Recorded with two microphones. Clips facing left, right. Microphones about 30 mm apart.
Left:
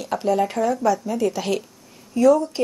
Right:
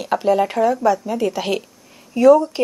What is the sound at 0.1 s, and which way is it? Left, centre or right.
A woman's voice, centre.